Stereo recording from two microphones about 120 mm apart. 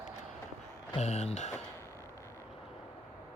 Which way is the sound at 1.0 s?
65° left (ahead or behind).